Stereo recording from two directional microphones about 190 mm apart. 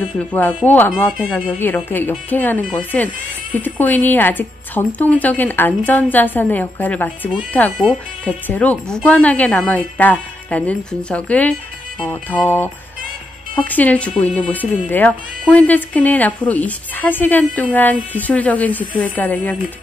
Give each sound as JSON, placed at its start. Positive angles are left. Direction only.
{"t": 0.3, "sound": "speech", "side_deg": 10}